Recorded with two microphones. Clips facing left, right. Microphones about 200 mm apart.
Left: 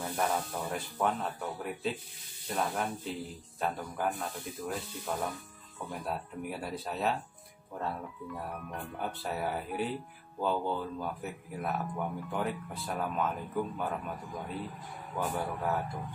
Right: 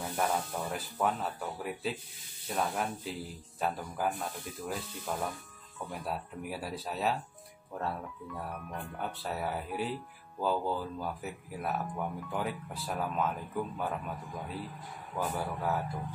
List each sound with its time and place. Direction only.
0.0 s speech: centre (ahead or behind)
8.9 s speech: centre (ahead or behind)